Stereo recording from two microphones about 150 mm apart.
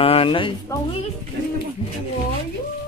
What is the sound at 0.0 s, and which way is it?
Speech, 40° left (ahead or behind).